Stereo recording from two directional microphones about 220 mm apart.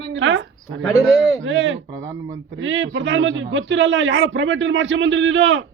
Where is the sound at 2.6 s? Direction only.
60° right (ahead or behind).